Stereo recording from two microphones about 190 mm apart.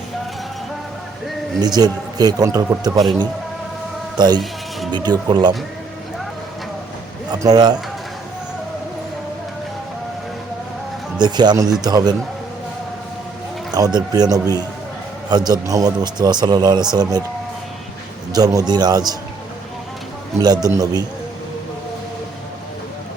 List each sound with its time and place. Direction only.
1.6 s speech: 20° right (ahead or behind)
7.3 s speech: 20° right (ahead or behind)
11.2 s speech: 20° right (ahead or behind)
13.7 s speech: 20° right (ahead or behind)
18.3 s speech: 20° right (ahead or behind)
20.4 s speech: 20° right (ahead or behind)